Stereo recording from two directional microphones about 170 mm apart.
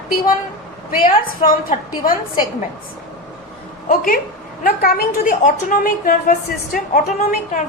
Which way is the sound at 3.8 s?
55° left (ahead or behind).